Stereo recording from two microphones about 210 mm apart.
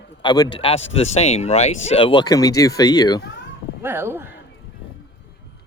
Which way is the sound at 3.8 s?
10° right (ahead or behind).